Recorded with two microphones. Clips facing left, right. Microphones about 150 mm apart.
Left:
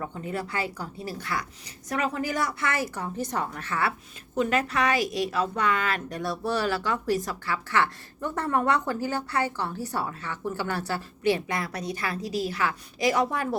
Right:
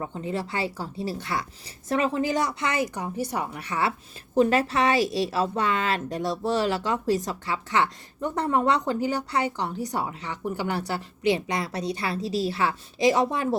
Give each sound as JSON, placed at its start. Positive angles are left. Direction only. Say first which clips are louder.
{"t": 0.0, "sound": "a woman's voice", "louder": "right 2 dB", "side_deg": -25}
{"t": 4.4, "sound": "a woman's voice", "louder": "right 4 dB", "side_deg": -30}